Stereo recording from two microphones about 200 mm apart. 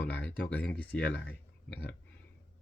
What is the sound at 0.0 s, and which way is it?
Speech, 5° left (ahead or behind).